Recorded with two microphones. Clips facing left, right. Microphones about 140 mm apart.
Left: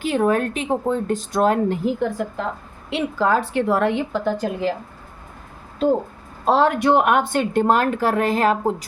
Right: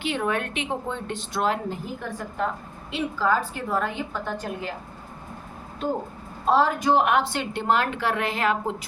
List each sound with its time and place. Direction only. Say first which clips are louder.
0.0 s a woman's voice: left 7 dB; 40° left (ahead or behind)
1.7 s speech: left 11 dB; 90° left
2.9 s a woman's voice: left 4 dB; 75° left (ahead or behind); by 4.7 s 90° left
6.4 s a woman's voice: left 4 dB; 85° left; by 8.7 s 40° left (ahead or behind)